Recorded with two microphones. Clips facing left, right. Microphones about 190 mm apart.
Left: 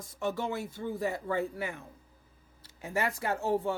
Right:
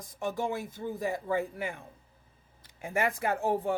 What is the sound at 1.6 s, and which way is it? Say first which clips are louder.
A man's voice: right 1 dB; 50° right (ahead or behind).